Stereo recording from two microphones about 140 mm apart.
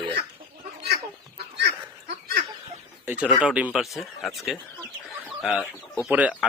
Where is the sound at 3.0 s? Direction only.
10° right (ahead or behind).